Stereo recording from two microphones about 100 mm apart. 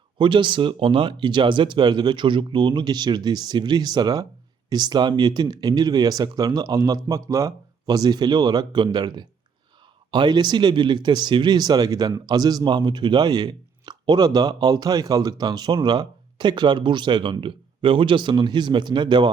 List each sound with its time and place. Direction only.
0.2 s speech: 55° right (ahead or behind)